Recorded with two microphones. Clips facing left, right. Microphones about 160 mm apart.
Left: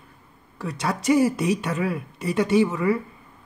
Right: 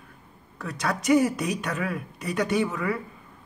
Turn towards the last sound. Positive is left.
turn(degrees=25)  # may be behind; listen again after turning